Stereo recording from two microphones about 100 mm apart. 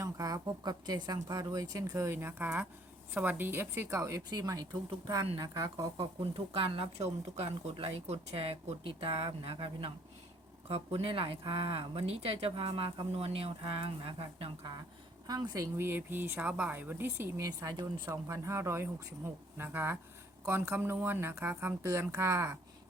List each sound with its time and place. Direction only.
0.0 s speech: 35° right (ahead or behind)
2.0 s speech: 20° right (ahead or behind)
3.8 s speech: 30° right (ahead or behind)
6.3 s speech: 70° right (ahead or behind)
10.7 s speech: 90° right; by 14.5 s 65° right (ahead or behind)
15.3 s speech: 40° right (ahead or behind); by 21.8 s 20° right (ahead or behind)
21.8 s speech: 30° right (ahead or behind)